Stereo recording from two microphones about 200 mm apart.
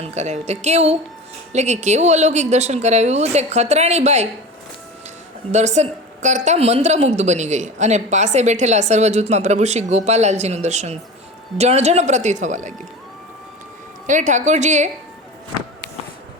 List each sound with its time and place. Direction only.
0.0 s a woman's voice: 35° right (ahead or behind)
5.5 s a woman's voice: 35° right (ahead or behind)
14.1 s a woman's voice: 40° right (ahead or behind)